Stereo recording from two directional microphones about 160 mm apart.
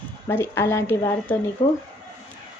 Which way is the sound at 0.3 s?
15° left (ahead or behind).